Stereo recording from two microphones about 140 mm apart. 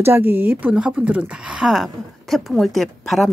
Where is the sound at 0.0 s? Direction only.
15° right (ahead or behind).